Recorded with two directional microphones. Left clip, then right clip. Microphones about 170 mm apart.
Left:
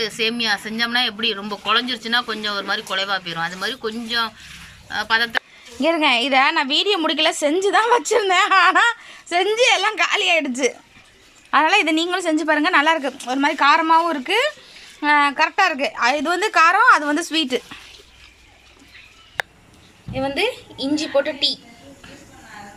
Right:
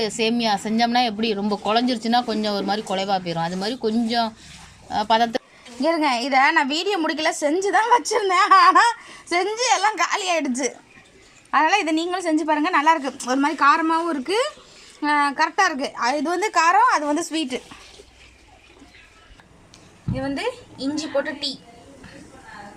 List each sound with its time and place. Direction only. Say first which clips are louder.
0.0 s a woman's voice: left 1 dB; 25° right (ahead or behind)
5.8 s a woman's voice: left 3 dB; centre (ahead or behind)
20.1 s a woman's voice: left 5 dB; centre (ahead or behind)